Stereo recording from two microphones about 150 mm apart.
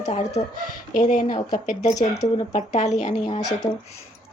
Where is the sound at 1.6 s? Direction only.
50° left (ahead or behind).